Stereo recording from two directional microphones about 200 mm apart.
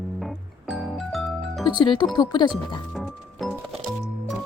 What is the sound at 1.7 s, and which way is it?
Speech, 25° left (ahead or behind).